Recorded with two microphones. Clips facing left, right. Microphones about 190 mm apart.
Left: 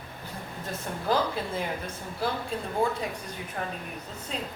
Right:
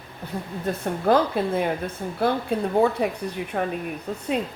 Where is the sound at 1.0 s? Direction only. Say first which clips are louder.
Right 7 dB; 60° right (ahead or behind).